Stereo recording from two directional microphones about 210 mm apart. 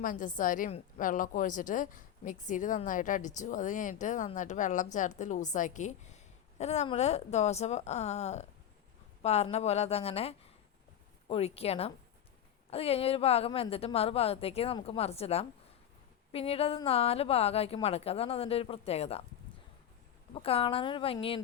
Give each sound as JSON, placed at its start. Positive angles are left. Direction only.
{"t": 0.0, "sound": "a woman's voice", "side_deg": 40}
{"t": 20.3, "sound": "a woman's voice", "side_deg": 25}